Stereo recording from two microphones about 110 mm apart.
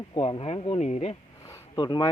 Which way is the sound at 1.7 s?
40° left (ahead or behind).